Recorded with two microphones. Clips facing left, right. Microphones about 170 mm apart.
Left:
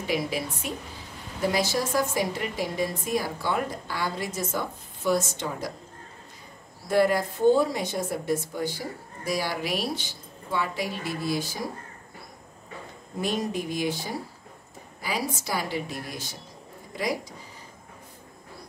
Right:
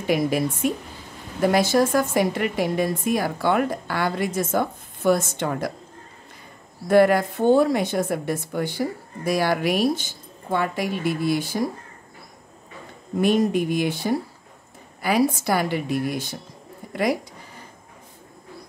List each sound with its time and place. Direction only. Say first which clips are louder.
0.0 s a woman's voice: right 7 dB; 50° right (ahead or behind)
6.9 s speech: right 6 dB; 65° right (ahead or behind)
13.2 s speech: right 9 dB; 60° right (ahead or behind)